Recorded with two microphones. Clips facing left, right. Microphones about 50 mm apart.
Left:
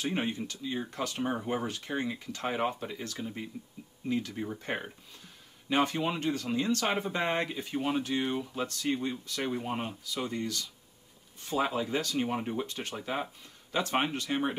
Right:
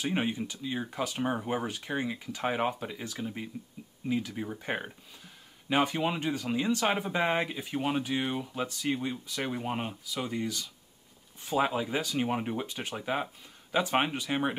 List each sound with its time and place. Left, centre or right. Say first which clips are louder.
0.0 s speech: right 1 dB; centre